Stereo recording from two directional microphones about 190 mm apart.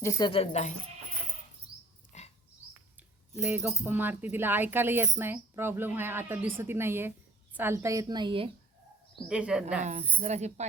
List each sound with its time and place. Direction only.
0.0 s speech: 15° left (ahead or behind)
0.3 s speech: 35° left (ahead or behind)
2.1 s dog: 35° left (ahead or behind)
3.4 s speech: 5° right (ahead or behind); by 8.4 s 25° right (ahead or behind)
9.2 s speech: 5° right (ahead or behind)
9.8 s speech: 40° right (ahead or behind)